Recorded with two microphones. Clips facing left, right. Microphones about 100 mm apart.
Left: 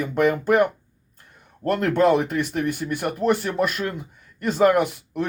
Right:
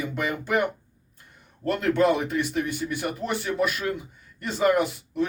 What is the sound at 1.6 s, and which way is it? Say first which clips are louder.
Speech: left 3 dB; 50° left (ahead or behind).